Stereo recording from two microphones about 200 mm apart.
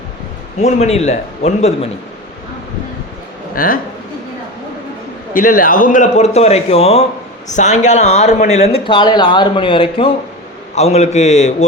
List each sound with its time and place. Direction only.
0.6 s speech: 30° left (ahead or behind)
3.5 s speech: 45° left (ahead or behind)
5.3 s speech: 45° left (ahead or behind)